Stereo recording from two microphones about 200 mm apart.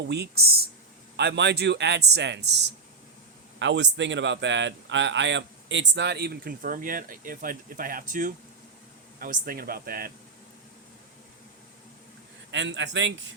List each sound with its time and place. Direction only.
0.0 s a man's voice: 55° right (ahead or behind)
12.5 s a man's voice: 65° right (ahead or behind)